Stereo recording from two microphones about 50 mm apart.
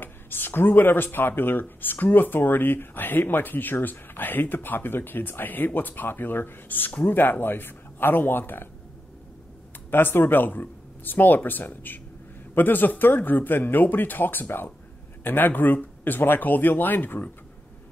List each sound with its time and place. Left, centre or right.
0.0 s speech: left
9.8 s speech: left